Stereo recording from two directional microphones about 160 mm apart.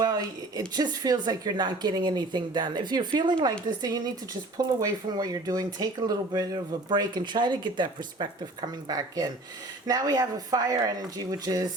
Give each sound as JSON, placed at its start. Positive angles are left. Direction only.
{"t": 0.0, "sound": "speech", "side_deg": -25}